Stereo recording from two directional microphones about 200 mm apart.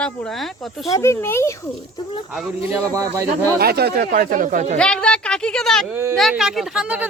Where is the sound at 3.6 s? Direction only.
50° right (ahead or behind).